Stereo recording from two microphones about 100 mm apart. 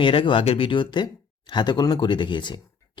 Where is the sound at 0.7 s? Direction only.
50° left (ahead or behind).